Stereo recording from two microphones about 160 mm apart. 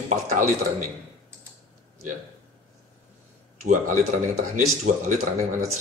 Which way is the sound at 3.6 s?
50° right (ahead or behind).